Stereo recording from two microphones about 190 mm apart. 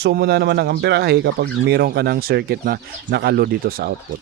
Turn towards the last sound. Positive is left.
turn(degrees=-50)  # may be behind; listen again after turning